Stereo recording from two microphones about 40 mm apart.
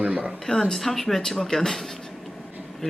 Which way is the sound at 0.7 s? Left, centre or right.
Centre.